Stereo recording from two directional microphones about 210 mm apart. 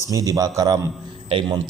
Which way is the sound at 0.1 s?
15° right (ahead or behind).